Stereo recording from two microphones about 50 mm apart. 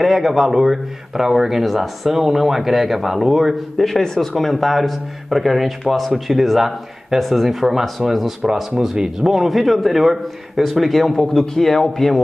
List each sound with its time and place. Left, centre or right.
0.0 s speech: centre